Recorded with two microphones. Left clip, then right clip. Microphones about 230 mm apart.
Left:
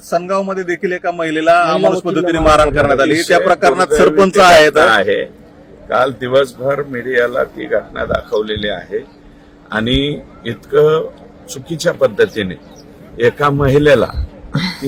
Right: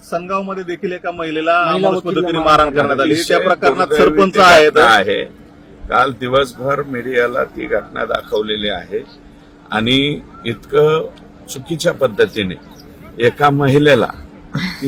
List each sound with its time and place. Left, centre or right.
0.1 s a man's voice: left
4.9 s a man's voice: centre
14.5 s a sound: centre